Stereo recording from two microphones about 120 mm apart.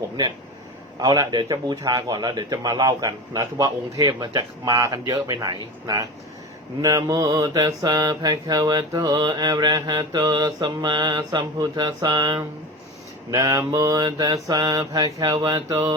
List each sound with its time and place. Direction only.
0.9 s mantra: 30° right (ahead or behind)